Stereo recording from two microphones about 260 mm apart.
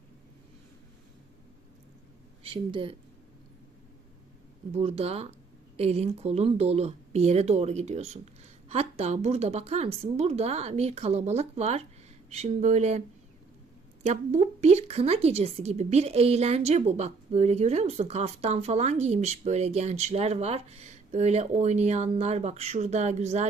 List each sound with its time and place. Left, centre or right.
2.4 s speech: right
4.7 s a woman's voice: right
14.0 s a woman's voice: right